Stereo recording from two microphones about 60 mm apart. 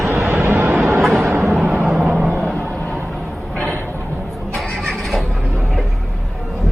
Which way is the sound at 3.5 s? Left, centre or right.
Left.